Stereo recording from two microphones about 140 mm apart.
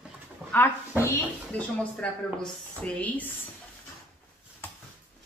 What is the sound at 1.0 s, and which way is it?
Speech, 20° left (ahead or behind).